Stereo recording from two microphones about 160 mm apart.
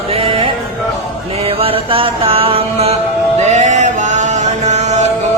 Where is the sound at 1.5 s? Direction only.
35° right (ahead or behind).